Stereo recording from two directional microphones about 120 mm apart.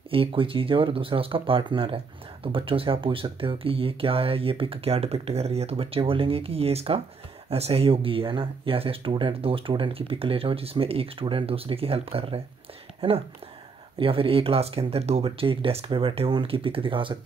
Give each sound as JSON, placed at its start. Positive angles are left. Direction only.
{"t": 0.1, "sound": "speech", "side_deg": -50}